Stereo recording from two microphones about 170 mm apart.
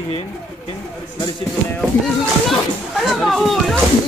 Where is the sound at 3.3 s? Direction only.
Centre (ahead or behind).